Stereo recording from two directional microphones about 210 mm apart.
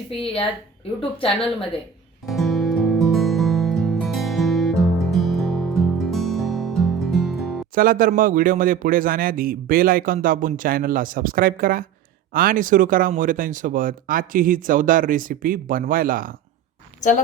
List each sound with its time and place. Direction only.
1.2 s speech: 25° left (ahead or behind)
2.2 s music: centre (ahead or behind)
7.8 s a man's voice: 40° right (ahead or behind)